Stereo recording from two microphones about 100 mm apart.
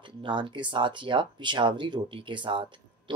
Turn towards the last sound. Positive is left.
turn(degrees=-55)  # may be behind; listen again after turning